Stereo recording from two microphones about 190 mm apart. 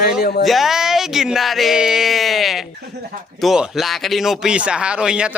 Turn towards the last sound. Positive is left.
turn(degrees=-5)  # may be behind; listen again after turning